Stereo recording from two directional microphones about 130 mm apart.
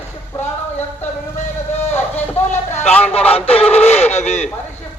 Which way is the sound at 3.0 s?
50° left (ahead or behind).